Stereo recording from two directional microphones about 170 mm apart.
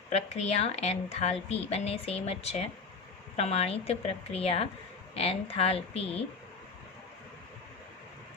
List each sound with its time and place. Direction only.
0.1 s a woman's voice: 40° left (ahead or behind)